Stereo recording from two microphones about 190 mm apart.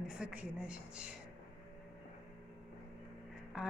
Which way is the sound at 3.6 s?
5° right (ahead or behind).